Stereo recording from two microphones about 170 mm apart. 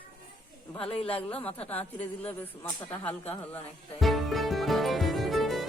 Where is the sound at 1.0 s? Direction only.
35° left (ahead or behind).